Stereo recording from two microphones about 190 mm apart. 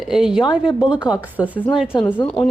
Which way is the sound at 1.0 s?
20° left (ahead or behind).